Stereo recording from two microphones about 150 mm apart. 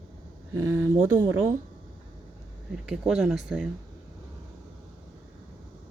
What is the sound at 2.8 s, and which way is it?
Speech, 5° right (ahead or behind).